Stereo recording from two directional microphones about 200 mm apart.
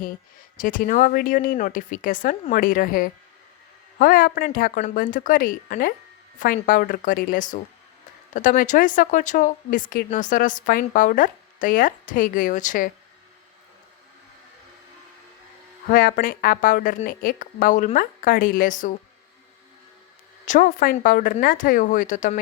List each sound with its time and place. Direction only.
0.5 s a woman's voice: 45° left (ahead or behind)
15.9 s a woman's voice: 45° left (ahead or behind)
20.4 s a woman's voice: 40° left (ahead or behind)